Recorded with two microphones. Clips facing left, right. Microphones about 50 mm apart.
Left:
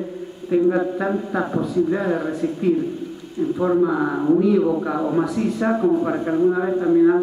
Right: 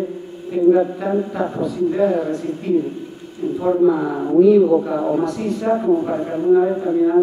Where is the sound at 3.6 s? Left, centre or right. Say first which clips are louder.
Right 2 dB; centre.